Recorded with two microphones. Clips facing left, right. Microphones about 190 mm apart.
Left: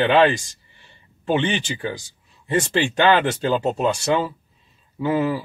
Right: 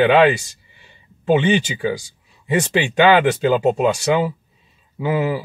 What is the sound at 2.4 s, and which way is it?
Speech, 10° right (ahead or behind).